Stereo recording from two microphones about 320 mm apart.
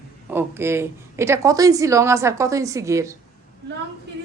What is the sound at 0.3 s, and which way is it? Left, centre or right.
A woman's voice, centre.